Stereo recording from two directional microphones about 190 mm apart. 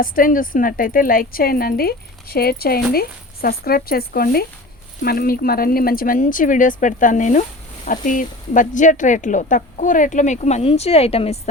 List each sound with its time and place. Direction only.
0.0 s a woman's voice: 45° left (ahead or behind); by 11.3 s 30° left (ahead or behind)